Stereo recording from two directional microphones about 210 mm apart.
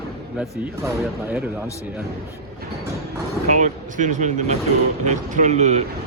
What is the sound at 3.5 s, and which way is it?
Speech, 35° right (ahead or behind).